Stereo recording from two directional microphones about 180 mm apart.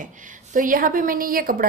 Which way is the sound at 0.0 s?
45° right (ahead or behind).